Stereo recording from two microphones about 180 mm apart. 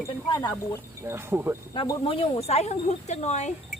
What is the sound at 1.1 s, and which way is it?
Speech, 15° right (ahead or behind).